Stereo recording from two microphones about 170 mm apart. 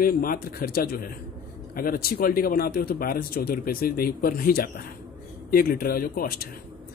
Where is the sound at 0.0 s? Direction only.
60° left (ahead or behind).